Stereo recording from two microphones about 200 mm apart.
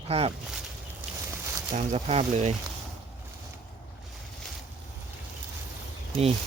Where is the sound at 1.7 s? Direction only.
35° right (ahead or behind).